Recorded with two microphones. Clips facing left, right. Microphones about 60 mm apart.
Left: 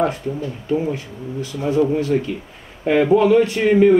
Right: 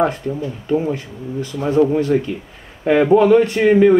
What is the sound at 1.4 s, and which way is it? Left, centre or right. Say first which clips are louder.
Speech: right 1 dB; right.